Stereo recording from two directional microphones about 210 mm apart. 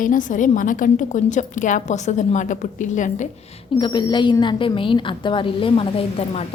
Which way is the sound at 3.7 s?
20° left (ahead or behind).